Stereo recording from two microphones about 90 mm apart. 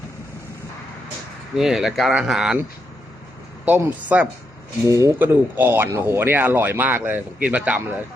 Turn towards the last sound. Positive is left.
turn(degrees=-15)  # may be behind; listen again after turning